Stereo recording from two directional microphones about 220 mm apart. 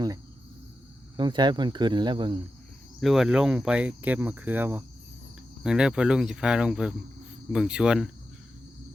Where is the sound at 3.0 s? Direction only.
Centre (ahead or behind).